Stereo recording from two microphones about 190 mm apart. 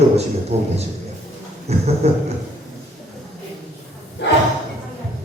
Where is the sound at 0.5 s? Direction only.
35° right (ahead or behind).